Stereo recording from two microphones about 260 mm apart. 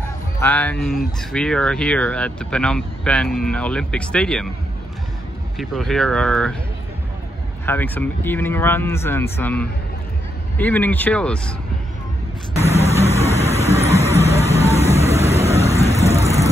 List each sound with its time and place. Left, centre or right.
0.4 s speech: centre
5.6 s speech: centre
7.6 s speech: centre
12.5 s a sound: left